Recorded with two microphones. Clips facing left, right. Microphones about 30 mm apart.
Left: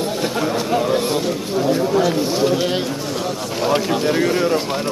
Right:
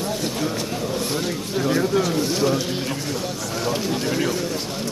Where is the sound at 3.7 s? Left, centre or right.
Left.